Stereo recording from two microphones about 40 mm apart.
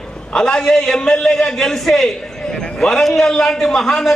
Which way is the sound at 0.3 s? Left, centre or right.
Centre.